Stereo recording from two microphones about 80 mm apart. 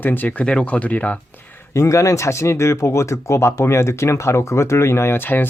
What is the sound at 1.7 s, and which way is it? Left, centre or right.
Speech, left.